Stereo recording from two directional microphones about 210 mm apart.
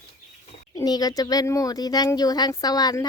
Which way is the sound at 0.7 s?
20° left (ahead or behind).